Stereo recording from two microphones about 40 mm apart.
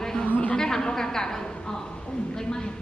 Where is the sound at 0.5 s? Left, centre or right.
Centre.